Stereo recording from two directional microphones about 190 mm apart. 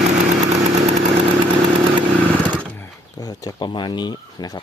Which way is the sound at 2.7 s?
15° left (ahead or behind).